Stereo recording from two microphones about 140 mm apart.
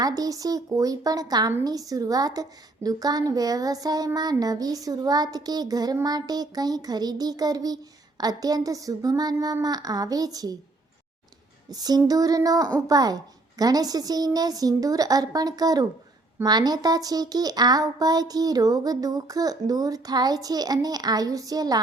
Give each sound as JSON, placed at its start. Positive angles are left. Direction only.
{"t": 0.0, "sound": "a woman's voice", "side_deg": -25}
{"t": 11.7, "sound": "a woman's voice", "side_deg": -30}